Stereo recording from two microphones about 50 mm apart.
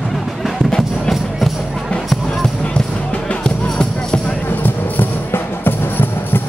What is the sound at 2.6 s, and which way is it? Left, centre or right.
Music, left.